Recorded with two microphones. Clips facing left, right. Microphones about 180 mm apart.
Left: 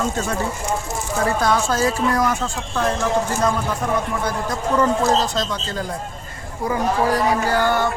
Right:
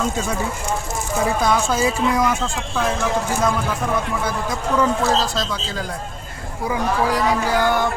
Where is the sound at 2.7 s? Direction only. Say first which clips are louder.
Left 1 dB; 5° right (ahead or behind).